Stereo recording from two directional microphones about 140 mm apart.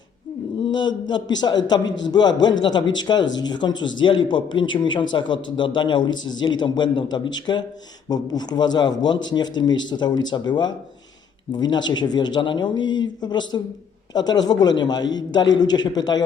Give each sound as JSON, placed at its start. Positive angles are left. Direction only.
{"t": 0.6, "sound": "a man's voice", "side_deg": 35}